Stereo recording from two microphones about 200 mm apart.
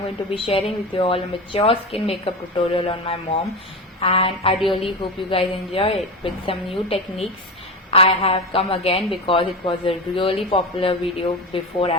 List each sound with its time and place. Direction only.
0.3 s a woman's voice: 25° left (ahead or behind)
4.5 s speech: centre (ahead or behind)
4.8 s a woman's voice: 30° left (ahead or behind)